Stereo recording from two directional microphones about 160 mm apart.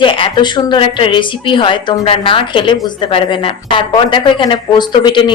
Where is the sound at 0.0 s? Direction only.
30° left (ahead or behind).